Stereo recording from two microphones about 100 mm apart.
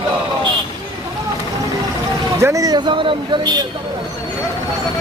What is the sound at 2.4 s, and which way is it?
Speech, 30° right (ahead or behind).